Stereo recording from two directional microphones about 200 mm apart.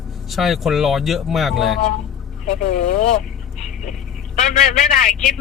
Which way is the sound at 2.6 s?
40° left (ahead or behind).